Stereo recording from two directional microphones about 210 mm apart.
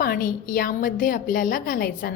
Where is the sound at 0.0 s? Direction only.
45° left (ahead or behind).